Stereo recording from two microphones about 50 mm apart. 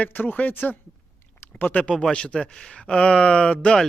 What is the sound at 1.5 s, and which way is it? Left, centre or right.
Speech, left.